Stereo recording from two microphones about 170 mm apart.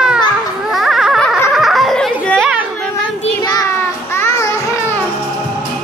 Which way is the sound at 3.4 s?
25° left (ahead or behind).